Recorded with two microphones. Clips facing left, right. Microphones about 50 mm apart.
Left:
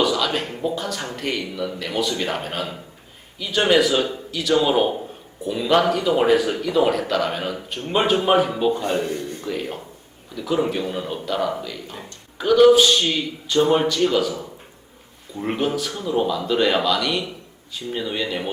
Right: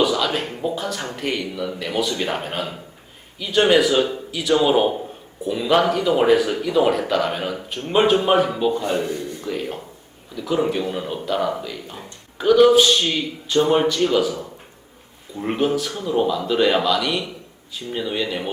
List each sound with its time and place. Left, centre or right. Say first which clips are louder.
0.0 s a sound: right 1 dB; centre
0.6 s speech: even; centre
9.0 s a man's voice: even; left
9.4 s speech: right 1 dB; centre
15.4 s speech: right 2 dB; centre